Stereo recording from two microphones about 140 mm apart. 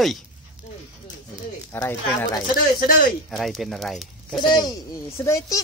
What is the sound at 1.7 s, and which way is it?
Speech, 15° left (ahead or behind).